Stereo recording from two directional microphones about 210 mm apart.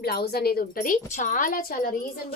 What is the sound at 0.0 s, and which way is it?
A woman's voice, 50° left (ahead or behind).